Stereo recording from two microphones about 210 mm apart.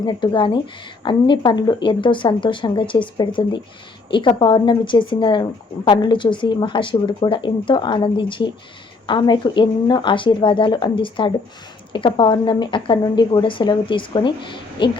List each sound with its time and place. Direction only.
0.0 s speech: 20° left (ahead or behind)